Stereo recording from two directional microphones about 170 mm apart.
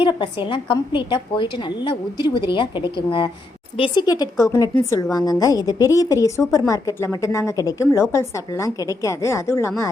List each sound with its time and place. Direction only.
0.0 s a woman's voice: 30° left (ahead or behind)